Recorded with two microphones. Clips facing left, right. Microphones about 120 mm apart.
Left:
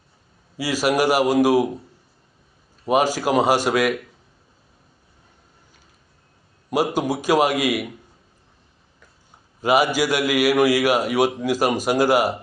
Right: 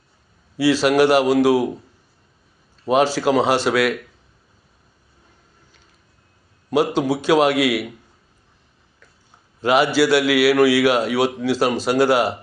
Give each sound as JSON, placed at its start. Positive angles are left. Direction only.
{"t": 0.5, "sound": "a man's voice", "side_deg": 10}
{"t": 2.8, "sound": "a man's voice", "side_deg": 10}
{"t": 6.7, "sound": "a man's voice", "side_deg": 10}
{"t": 7.5, "sound": "a man's voice", "side_deg": -75}
{"t": 9.6, "sound": "a man's voice", "side_deg": 10}